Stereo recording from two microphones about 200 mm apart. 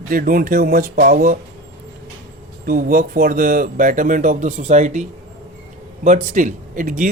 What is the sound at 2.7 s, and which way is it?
Speech, 45° right (ahead or behind).